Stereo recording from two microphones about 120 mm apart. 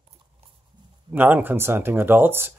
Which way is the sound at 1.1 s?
15° right (ahead or behind).